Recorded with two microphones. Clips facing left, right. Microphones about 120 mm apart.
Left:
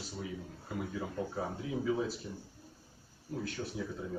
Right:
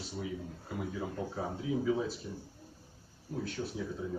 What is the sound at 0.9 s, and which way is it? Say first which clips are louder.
A man's voice: left 1 dB; centre (ahead or behind).